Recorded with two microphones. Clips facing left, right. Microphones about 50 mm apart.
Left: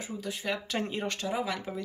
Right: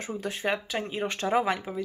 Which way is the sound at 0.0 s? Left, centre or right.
Right.